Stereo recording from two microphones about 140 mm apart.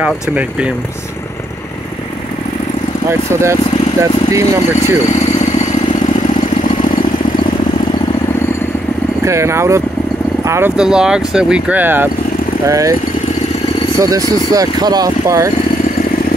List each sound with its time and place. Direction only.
0.0 s speech: 10° right (ahead or behind)
3.1 s speech: 20° right (ahead or behind)
9.2 s speech: 20° right (ahead or behind)
10.8 s speech: 5° right (ahead or behind); by 12.9 s 25° right (ahead or behind)
13.9 s speech: 25° right (ahead or behind)